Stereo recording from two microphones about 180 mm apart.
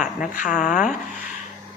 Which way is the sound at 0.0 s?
45° left (ahead or behind).